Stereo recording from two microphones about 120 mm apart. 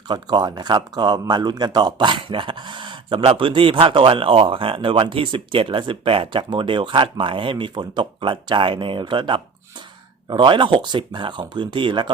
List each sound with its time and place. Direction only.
0.1 s speech: 35° right (ahead or behind)